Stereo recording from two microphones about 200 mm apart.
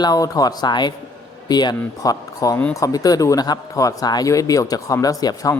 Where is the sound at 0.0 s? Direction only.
20° left (ahead or behind).